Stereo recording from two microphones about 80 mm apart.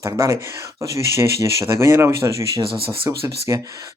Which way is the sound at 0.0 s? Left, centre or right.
Right.